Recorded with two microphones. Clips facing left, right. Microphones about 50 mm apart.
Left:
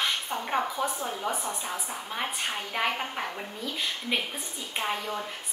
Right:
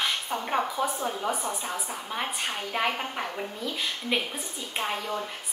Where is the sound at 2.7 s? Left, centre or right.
Centre.